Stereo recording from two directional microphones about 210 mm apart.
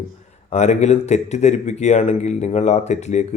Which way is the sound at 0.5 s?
30° left (ahead or behind).